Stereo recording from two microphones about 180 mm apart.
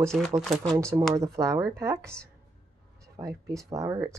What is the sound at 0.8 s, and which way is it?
Speech, 15° right (ahead or behind).